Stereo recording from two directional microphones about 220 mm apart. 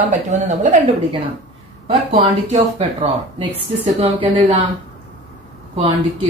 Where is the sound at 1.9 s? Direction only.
30° right (ahead or behind).